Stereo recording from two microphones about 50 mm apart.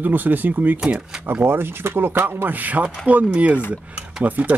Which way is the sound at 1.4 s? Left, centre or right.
Right.